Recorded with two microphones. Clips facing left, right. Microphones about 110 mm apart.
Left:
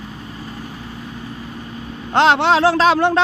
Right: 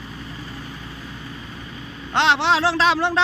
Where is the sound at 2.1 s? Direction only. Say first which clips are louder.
Left 5 dB; 45° left (ahead or behind).